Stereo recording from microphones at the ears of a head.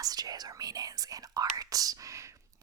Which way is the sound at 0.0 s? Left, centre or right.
Right.